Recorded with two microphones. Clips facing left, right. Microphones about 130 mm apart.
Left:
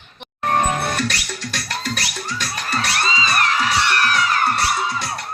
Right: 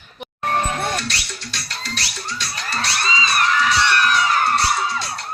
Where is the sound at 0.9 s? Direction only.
50° left (ahead or behind).